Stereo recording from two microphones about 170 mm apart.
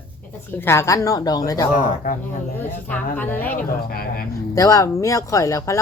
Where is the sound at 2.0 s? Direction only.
55° left (ahead or behind).